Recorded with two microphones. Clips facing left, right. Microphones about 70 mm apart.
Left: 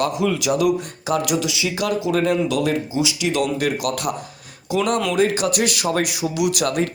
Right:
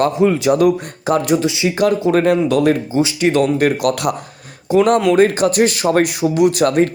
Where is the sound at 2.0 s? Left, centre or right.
Right.